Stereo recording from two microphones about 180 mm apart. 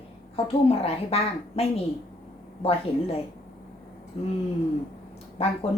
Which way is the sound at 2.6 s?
30° left (ahead or behind).